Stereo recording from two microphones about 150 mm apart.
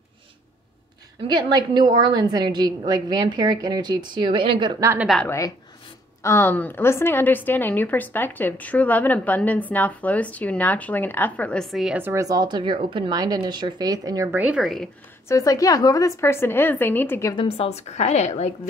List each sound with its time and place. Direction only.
1.2 s speech: 30° right (ahead or behind)
5.0 s a woman's voice: centre (ahead or behind)
6.2 s a woman's voice: 15° left (ahead or behind); by 12.0 s centre (ahead or behind)
12.0 s speech: 20° right (ahead or behind); by 14.9 s centre (ahead or behind)
15.2 s speech: 20° left (ahead or behind)
17.3 s a woman's voice: 35° left (ahead or behind)